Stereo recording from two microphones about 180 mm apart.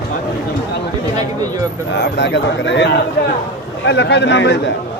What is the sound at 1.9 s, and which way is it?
A man's voice, 75° left (ahead or behind).